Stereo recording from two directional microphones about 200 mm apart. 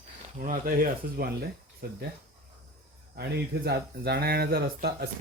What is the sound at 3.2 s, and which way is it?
Speech, 55° right (ahead or behind).